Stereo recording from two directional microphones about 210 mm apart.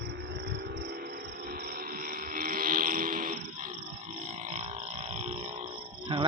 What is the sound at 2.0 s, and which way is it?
Music, 45° right (ahead or behind).